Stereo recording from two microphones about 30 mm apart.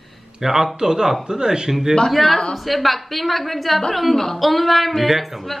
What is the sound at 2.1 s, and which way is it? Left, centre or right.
A woman's voice, centre.